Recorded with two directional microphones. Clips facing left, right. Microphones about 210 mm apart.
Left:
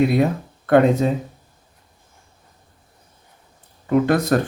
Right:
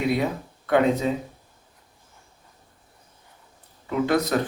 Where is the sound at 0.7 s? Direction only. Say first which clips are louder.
Left 5 dB; 45° left (ahead or behind).